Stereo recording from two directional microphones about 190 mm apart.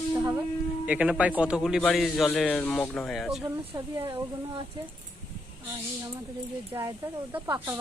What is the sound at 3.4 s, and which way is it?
Speech, 15° right (ahead or behind).